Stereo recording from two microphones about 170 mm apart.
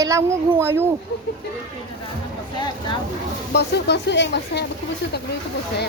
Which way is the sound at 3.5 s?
90° left.